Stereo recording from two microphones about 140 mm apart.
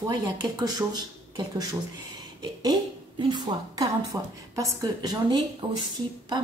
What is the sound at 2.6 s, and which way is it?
A woman's voice, 30° right (ahead or behind).